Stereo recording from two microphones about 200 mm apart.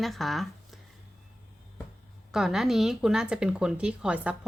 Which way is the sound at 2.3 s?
Centre (ahead or behind).